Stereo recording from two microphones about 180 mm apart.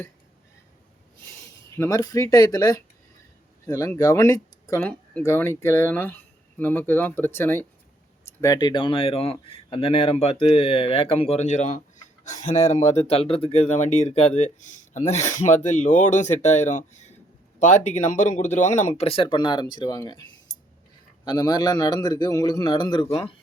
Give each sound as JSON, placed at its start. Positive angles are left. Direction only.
{"t": 1.7, "sound": "a man's voice", "side_deg": 15}
{"t": 21.2, "sound": "a man's voice", "side_deg": 20}